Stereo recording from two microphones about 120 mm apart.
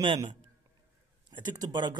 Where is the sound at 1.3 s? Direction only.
40° right (ahead or behind).